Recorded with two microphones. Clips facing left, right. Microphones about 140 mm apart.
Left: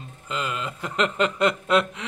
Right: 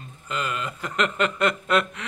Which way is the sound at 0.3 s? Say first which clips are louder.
Even; 20° left (ahead or behind).